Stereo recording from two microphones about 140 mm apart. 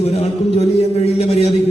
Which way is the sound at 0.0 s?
50° left (ahead or behind).